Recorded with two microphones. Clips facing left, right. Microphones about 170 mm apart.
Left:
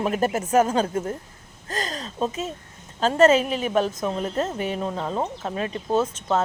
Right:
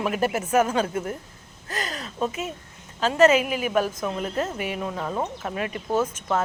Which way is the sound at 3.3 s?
30° left (ahead or behind).